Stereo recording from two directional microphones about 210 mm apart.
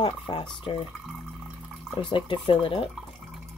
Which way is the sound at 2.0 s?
25° left (ahead or behind).